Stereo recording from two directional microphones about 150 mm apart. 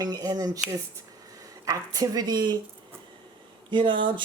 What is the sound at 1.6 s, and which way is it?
Speech, 25° right (ahead or behind).